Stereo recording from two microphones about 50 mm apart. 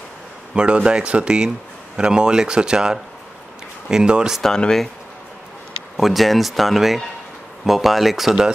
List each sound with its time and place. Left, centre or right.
0.6 s speech: right
4.4 s speech: centre
5.9 s speech: centre